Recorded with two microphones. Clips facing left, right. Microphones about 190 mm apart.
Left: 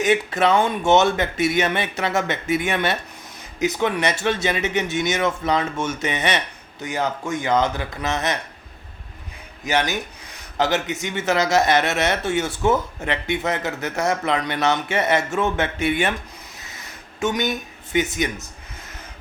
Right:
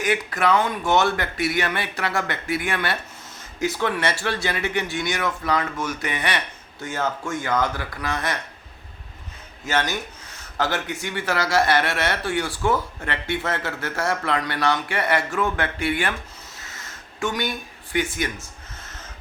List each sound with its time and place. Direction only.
0.0 s speech: 25° left (ahead or behind)
9.6 s speech: 15° left (ahead or behind)
16.6 s a sound: 15° left (ahead or behind)